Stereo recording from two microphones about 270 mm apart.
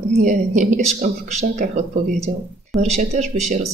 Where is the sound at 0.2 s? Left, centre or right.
Right.